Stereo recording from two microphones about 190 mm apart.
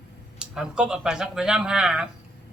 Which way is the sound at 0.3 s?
5° right (ahead or behind).